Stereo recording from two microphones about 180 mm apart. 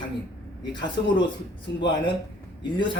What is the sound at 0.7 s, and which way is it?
Speech, 25° left (ahead or behind).